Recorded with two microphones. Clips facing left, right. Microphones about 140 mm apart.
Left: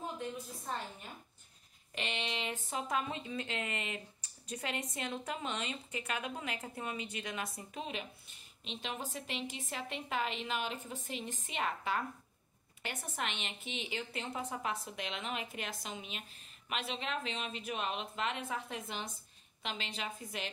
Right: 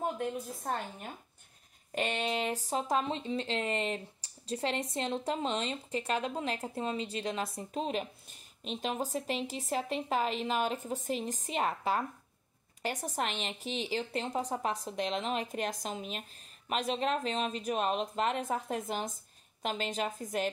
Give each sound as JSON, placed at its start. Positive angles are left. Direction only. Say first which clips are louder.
{"t": 0.0, "sound": "a woman's voice", "louder": "right 7 dB", "side_deg": -55}
{"t": 2.0, "sound": "a woman's voice", "louder": "right 7 dB", "side_deg": -45}